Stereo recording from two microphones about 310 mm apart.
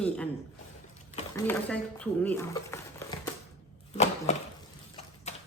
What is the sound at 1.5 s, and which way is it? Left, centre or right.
Speech, centre.